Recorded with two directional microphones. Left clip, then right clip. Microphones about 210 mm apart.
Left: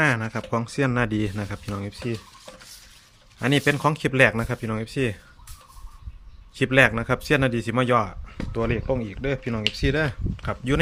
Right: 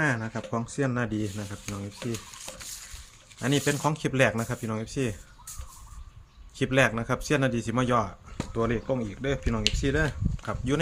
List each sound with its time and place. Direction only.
0.0 s speech: 45° left (ahead or behind)
3.4 s speech: 35° left (ahead or behind)
6.6 s speech: 30° left (ahead or behind)